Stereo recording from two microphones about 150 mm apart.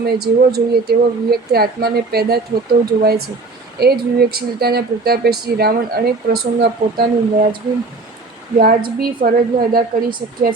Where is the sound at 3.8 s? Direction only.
90° right.